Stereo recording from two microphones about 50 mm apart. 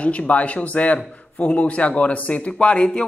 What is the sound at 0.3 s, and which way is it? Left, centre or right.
A man's voice, left.